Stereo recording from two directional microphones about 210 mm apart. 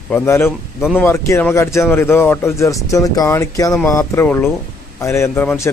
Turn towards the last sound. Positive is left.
turn(degrees=10)  # may be behind; listen again after turning